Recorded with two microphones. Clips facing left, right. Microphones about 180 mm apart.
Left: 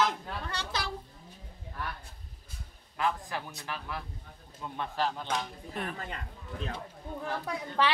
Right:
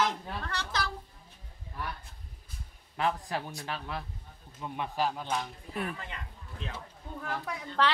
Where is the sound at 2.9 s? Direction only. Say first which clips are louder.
Right 1 dB; 30° right (ahead or behind).